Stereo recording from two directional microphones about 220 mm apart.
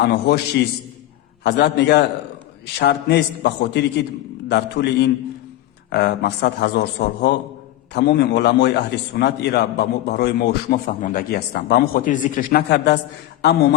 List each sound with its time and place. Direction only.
0.0 s a man's voice: 50° left (ahead or behind)